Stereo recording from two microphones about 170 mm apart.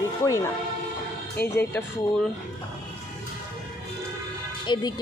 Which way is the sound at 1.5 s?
15° left (ahead or behind).